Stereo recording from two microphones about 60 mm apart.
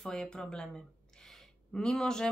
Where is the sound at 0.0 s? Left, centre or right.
Centre.